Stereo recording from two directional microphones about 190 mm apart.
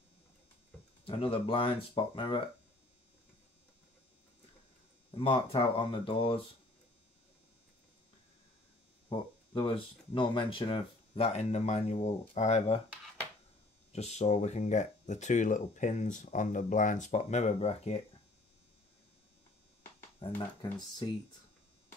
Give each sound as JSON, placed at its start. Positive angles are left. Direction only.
{"t": 1.0, "sound": "speech", "side_deg": 30}
{"t": 5.1, "sound": "speech", "side_deg": 30}
{"t": 9.1, "sound": "speech", "side_deg": 25}
{"t": 13.9, "sound": "speech", "side_deg": 35}
{"t": 20.2, "sound": "speech", "side_deg": 25}